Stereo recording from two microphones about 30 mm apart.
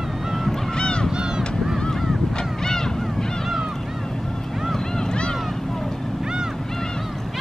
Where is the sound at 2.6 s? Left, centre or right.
Centre.